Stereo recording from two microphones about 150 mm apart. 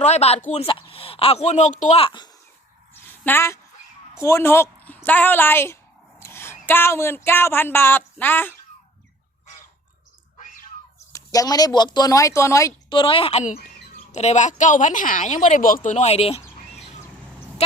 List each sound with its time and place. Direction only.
0.0 s speech: 45° left (ahead or behind)
2.0 s a woman's voice: 35° left (ahead or behind)
3.1 s a woman's voice: 15° left (ahead or behind)
11.1 s speech: 25° left (ahead or behind)
12.9 s a woman's voice: 35° left (ahead or behind)
14.1 s speech: 50° left (ahead or behind)